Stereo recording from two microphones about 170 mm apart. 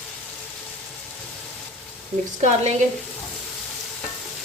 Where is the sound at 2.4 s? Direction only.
45° right (ahead or behind).